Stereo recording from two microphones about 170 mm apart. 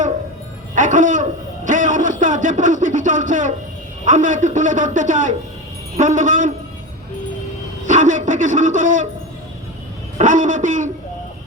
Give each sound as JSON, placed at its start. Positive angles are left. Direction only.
{"t": 0.8, "sound": "a man's voice", "side_deg": -50}
{"t": 7.9, "sound": "a man's voice", "side_deg": -50}
{"t": 10.2, "sound": "a man's voice", "side_deg": -50}